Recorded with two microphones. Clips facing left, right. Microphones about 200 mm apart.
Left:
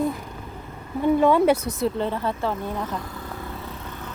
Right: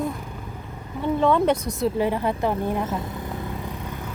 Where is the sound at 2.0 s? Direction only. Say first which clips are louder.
Right 3 dB; 15° right (ahead or behind).